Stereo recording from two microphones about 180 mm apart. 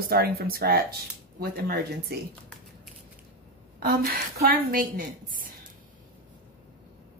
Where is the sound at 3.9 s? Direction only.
60° right (ahead or behind).